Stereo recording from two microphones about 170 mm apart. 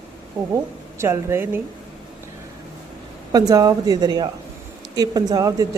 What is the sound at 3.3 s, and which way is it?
A woman's voice, 20° right (ahead or behind).